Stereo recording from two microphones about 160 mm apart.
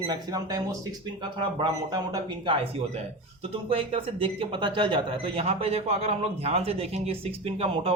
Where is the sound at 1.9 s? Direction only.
25° right (ahead or behind).